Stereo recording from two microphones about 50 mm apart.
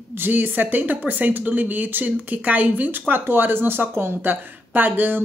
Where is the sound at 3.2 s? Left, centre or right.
Right.